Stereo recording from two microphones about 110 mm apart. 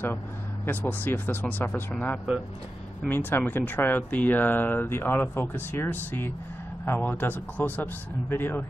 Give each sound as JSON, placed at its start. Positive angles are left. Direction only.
{"t": 0.7, "sound": "speech", "side_deg": 15}